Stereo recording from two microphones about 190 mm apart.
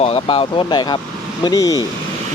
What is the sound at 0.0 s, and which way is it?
Speech, 30° left (ahead or behind).